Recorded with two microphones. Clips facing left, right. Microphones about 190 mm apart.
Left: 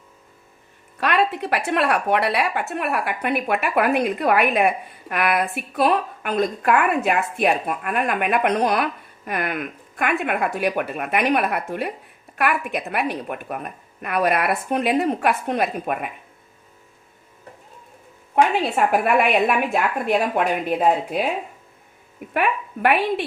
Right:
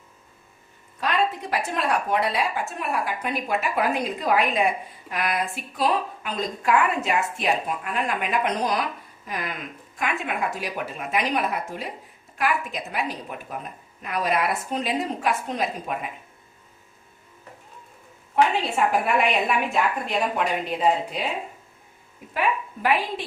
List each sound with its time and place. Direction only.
0.9 s a woman's voice: 70° left (ahead or behind)
18.3 s a sound: 60° left (ahead or behind)
18.9 s a woman's voice: 60° left (ahead or behind)
22.3 s a woman's voice: 65° left (ahead or behind)